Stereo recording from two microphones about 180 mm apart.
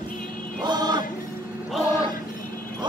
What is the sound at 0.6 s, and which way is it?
Music, 25° right (ahead or behind).